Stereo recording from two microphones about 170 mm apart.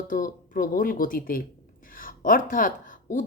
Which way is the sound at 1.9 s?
55° left (ahead or behind).